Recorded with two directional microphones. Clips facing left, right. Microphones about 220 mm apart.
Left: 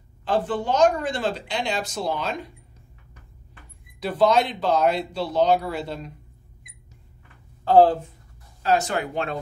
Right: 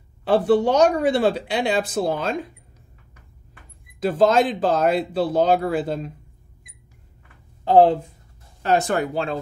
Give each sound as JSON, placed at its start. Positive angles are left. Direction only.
{"t": 0.2, "sound": "speech", "side_deg": -70}
{"t": 4.0, "sound": "speech", "side_deg": -45}
{"t": 7.6, "sound": "speech", "side_deg": -25}
{"t": 8.6, "sound": "speech", "side_deg": -55}